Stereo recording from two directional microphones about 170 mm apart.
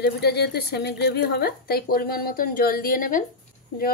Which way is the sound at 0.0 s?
70° left (ahead or behind).